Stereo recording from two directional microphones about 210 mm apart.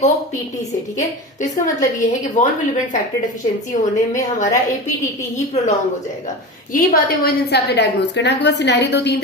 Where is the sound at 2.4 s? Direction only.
35° left (ahead or behind).